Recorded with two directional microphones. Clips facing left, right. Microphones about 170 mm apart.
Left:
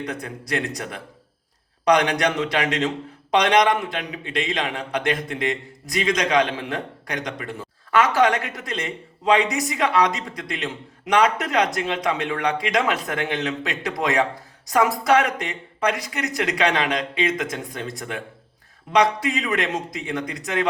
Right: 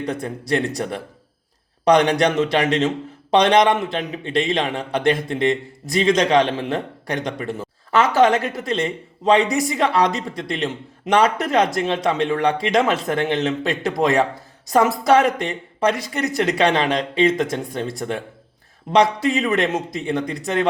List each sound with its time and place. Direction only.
0.0 s speech: 30° right (ahead or behind)